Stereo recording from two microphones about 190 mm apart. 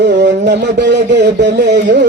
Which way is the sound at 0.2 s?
65° right (ahead or behind).